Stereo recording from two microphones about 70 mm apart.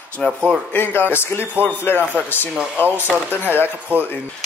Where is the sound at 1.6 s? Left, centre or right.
Right.